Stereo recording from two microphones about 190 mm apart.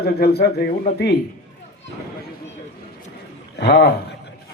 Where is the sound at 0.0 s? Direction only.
55° left (ahead or behind).